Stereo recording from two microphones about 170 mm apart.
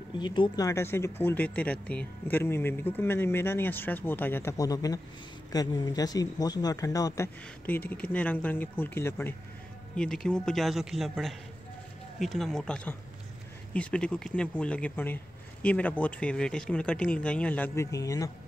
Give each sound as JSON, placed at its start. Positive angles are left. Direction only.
{"t": 0.2, "sound": "a man's voice", "side_deg": 25}